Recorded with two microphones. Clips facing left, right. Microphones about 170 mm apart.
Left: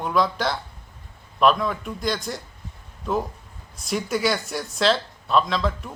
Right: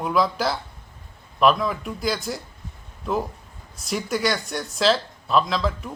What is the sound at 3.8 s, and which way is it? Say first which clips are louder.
A man's voice: left 1 dB; centre (ahead or behind).